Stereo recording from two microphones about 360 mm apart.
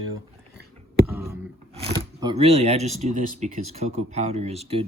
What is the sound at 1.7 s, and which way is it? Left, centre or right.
Speech, centre.